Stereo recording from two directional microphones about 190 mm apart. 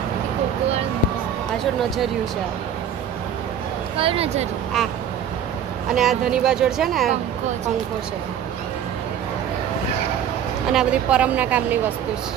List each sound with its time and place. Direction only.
4.0 s speech: 30° right (ahead or behind)
5.9 s speech: centre (ahead or behind)
10.7 s speech: 5° right (ahead or behind)